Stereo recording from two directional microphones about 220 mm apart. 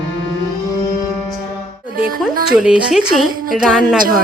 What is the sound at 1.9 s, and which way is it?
Music, 40° right (ahead or behind).